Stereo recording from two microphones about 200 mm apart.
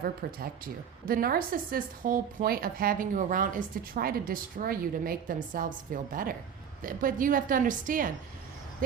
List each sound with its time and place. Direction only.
0.0 s a woman's voice: 45° right (ahead or behind)